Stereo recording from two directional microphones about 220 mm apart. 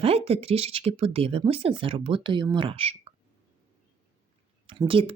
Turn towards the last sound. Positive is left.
turn(degrees=-25)  # may be behind; listen again after turning